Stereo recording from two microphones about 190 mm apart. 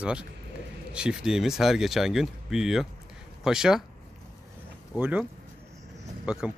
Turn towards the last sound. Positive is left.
turn(degrees=-5)  # may be behind; listen again after turning